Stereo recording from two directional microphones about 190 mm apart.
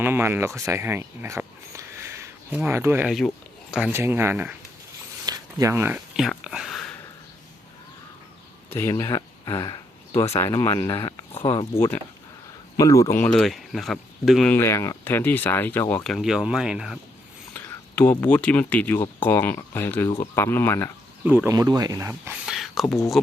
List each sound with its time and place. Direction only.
0.0 s speech: 10° right (ahead or behind)
3.1 s speech: centre (ahead or behind)
5.2 s a sound: 20° right (ahead or behind); by 6.9 s centre (ahead or behind)
8.7 s speech: 15° left (ahead or behind)
12.7 s speech: 15° left (ahead or behind); by 14.5 s centre (ahead or behind)
14.5 s speech: 15° left (ahead or behind)
16.0 s speech: centre (ahead or behind)
17.5 s speech: 10° left (ahead or behind)
21.2 s speech: 10° right (ahead or behind)